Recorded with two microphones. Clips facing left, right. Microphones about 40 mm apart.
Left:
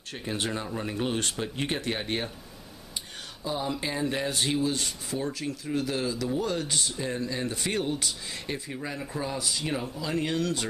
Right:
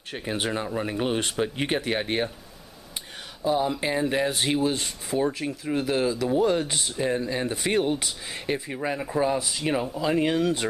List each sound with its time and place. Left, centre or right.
0.1 s speech: centre
3.4 s speech: centre
4.6 s speech: right